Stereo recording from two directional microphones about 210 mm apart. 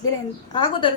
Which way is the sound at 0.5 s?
25° left (ahead or behind).